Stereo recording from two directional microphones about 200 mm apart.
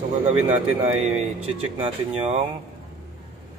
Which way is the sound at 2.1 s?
30° right (ahead or behind).